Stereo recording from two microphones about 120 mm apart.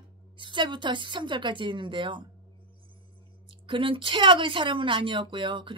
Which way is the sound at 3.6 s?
45° right (ahead or behind).